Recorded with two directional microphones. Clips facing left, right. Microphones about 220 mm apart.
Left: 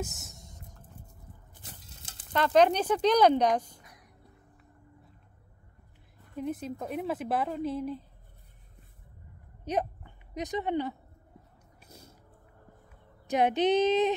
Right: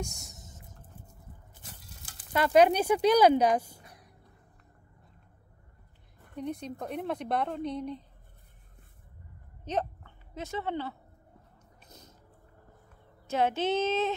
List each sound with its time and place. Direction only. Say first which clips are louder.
0.0 s whispering: left 1 dB; centre (ahead or behind)
2.3 s a woman's voice: right 1 dB; 10° right (ahead or behind)
6.3 s a woman's voice: left 2 dB; 5° left (ahead or behind)
9.7 s speech: left 1 dB; 10° left (ahead or behind)
11.8 s a sound: left 2 dB; 10° left (ahead or behind)
13.3 s speech: left 3 dB; 15° left (ahead or behind)